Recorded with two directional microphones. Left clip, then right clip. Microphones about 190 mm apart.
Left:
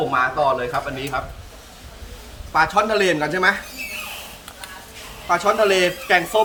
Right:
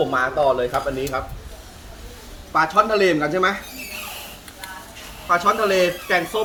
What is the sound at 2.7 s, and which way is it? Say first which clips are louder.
Speech: right 1 dB; 55° left (ahead or behind).